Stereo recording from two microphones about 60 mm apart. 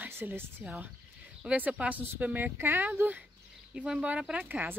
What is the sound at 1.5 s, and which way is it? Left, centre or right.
Speech, right.